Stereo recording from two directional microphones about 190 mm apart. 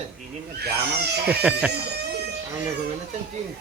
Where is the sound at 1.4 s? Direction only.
5° right (ahead or behind).